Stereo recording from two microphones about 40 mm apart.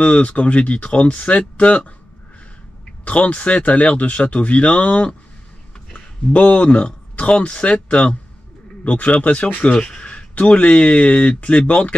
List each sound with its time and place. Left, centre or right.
0.0 s speech: left
3.1 s speech: left
6.3 s speech: left